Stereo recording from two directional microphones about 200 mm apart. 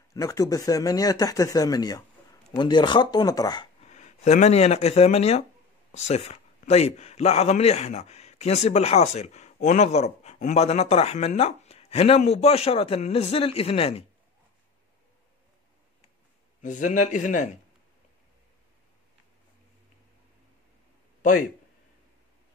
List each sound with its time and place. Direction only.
0.1 s speech: 15° left (ahead or behind)
3.8 s a man's voice: 35° left (ahead or behind)
16.6 s a man's voice: 40° left (ahead or behind)